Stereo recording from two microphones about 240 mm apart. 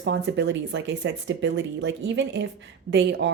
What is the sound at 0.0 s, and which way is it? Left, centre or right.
Speech, right.